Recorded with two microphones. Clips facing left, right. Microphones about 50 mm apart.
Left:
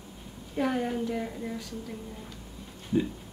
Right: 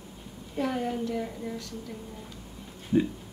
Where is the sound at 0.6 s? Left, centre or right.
Centre.